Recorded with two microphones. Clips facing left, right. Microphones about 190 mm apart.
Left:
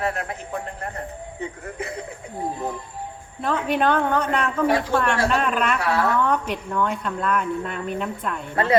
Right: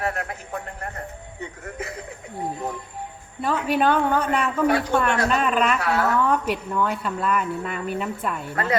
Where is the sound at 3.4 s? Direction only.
5° right (ahead or behind).